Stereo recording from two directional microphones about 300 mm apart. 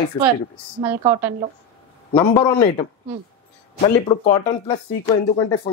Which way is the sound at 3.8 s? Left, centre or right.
Centre.